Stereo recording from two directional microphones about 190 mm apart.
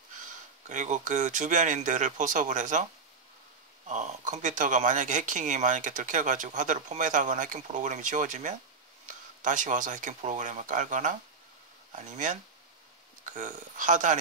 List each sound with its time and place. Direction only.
0.7 s speech: 40° right (ahead or behind)